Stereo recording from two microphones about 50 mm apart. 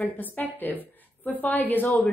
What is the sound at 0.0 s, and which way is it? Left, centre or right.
Speech, left.